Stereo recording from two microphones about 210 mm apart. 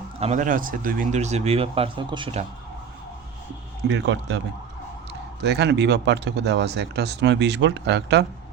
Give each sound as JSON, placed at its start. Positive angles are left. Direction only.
{"t": 0.2, "sound": "speech", "side_deg": -35}
{"t": 3.8, "sound": "speech", "side_deg": -55}
{"t": 5.4, "sound": "speech", "side_deg": -55}